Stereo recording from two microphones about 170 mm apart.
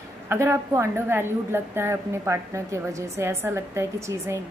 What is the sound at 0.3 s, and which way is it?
A woman's voice, 15° right (ahead or behind).